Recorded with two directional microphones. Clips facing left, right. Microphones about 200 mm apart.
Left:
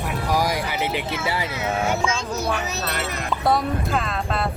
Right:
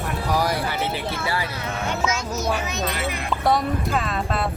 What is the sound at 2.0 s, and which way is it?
Music, 30° left (ahead or behind).